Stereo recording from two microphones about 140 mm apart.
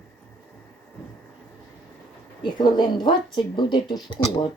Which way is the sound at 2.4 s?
30° left (ahead or behind).